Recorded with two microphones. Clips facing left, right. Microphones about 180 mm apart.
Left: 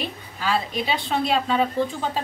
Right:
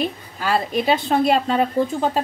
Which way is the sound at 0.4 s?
50° right (ahead or behind).